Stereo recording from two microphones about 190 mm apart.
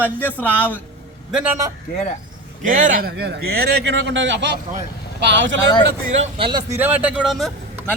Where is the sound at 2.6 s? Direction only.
45° right (ahead or behind); by 5.6 s 75° right (ahead or behind).